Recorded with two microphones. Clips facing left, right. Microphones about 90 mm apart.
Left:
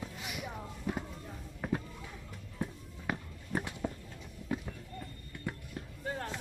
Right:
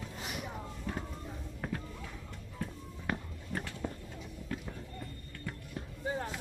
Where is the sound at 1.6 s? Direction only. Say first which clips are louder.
Left 4 dB; 5° left (ahead or behind).